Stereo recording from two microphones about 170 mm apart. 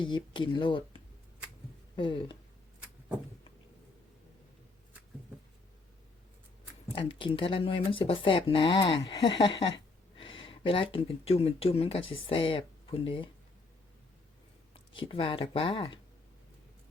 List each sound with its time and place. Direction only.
0.0 s speech: 30° left (ahead or behind)
6.9 s speech: 30° left (ahead or behind)
14.9 s speech: 30° left (ahead or behind)